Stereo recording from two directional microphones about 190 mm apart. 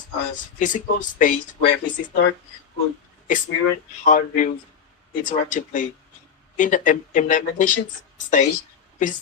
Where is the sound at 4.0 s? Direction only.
40° left (ahead or behind).